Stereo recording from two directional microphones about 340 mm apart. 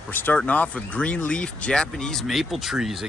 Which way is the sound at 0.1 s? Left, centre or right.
Centre.